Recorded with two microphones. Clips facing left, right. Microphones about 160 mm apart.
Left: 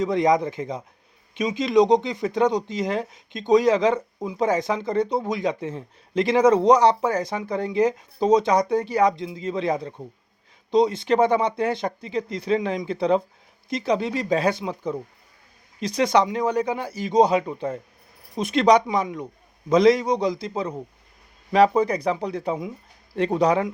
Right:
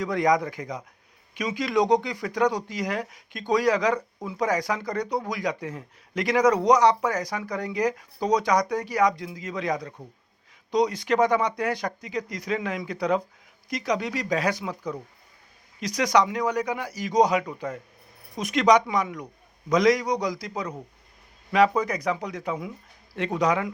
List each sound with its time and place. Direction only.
0.0 s speech: 25° left (ahead or behind)